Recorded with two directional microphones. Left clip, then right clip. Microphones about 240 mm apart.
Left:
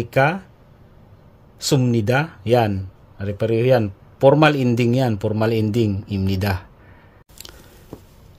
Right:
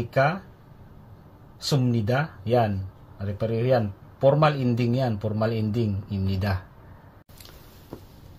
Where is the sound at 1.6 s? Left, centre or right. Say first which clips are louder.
Left 7 dB; left.